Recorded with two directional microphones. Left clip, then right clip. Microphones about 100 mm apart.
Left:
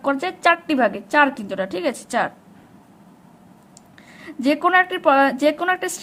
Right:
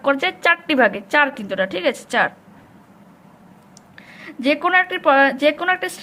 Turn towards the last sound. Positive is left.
turn(degrees=55)  # may be behind; listen again after turning